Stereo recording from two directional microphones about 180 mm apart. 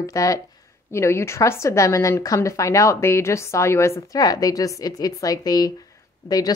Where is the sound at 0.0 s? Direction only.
20° left (ahead or behind).